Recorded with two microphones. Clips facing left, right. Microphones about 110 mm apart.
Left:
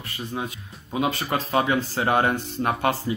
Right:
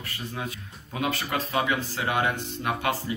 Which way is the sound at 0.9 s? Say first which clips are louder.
Left 4 dB; 25° left (ahead or behind).